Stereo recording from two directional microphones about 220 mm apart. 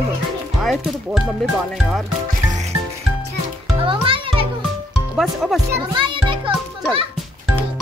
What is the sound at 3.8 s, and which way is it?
Music, 25° right (ahead or behind).